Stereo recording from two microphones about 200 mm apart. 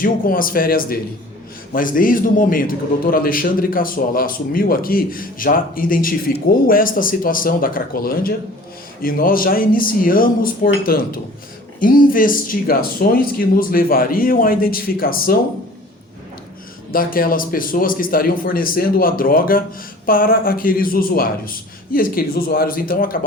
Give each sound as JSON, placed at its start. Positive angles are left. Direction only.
{"t": 0.0, "sound": "a man's voice", "side_deg": 45}
{"t": 16.9, "sound": "a man's voice", "side_deg": 45}